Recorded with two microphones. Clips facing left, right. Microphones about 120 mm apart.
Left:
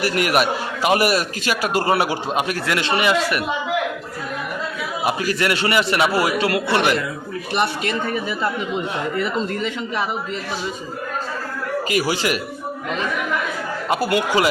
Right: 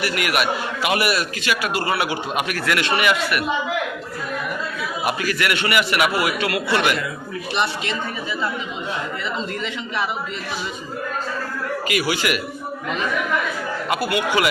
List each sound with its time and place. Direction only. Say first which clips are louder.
0.0 s a man's voice: left 3 dB; 40° left (ahead or behind)
5.0 s a man's voice: left 2 dB; 25° left (ahead or behind)
7.5 s speech: left 3 dB; 50° left (ahead or behind)
11.9 s a man's voice: left 1 dB; 35° left (ahead or behind)
13.9 s a man's voice: left 3 dB; 40° left (ahead or behind)